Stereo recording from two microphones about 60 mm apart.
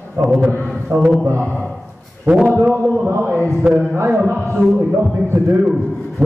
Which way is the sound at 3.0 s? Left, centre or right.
Right.